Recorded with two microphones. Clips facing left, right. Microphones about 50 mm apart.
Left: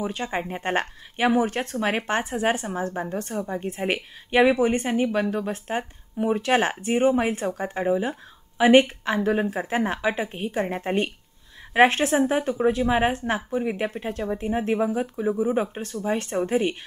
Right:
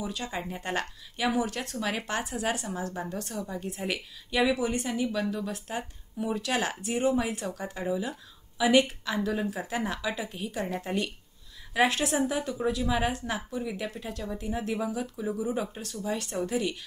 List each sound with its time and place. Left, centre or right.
0.0 s speech: left